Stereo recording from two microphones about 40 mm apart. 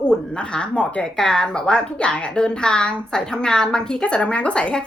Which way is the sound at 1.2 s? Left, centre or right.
Centre.